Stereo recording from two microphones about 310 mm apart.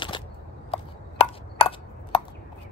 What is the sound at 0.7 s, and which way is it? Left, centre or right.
Chop, centre.